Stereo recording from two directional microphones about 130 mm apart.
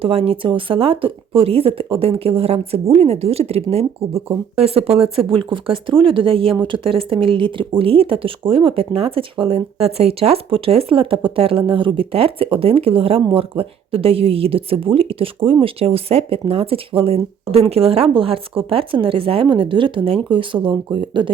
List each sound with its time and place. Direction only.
0.0 s speech: 50° right (ahead or behind)